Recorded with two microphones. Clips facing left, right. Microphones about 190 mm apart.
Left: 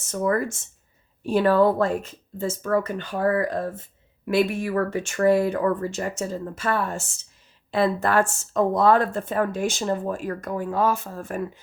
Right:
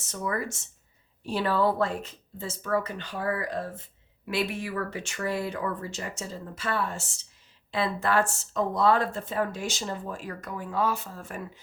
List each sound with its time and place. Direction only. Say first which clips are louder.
0.0 s speech: left 8 dB; 50° left (ahead or behind)